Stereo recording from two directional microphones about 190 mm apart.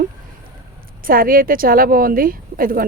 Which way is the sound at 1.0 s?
50° right (ahead or behind).